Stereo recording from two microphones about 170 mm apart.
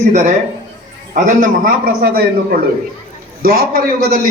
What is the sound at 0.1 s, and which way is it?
A man's voice, 45° right (ahead or behind).